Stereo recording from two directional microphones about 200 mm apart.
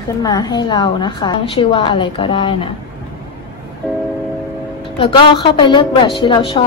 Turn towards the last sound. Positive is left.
turn(degrees=25)  # may be behind; listen again after turning